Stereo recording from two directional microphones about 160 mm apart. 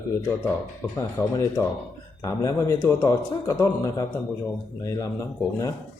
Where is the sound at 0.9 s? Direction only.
20° left (ahead or behind).